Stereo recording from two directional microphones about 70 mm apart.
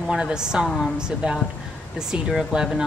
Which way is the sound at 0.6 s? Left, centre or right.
Centre.